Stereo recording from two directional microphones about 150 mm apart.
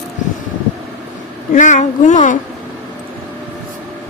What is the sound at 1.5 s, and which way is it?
Speech, 60° left (ahead or behind).